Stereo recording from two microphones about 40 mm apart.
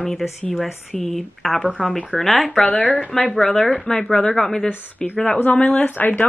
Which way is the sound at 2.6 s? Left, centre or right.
Left.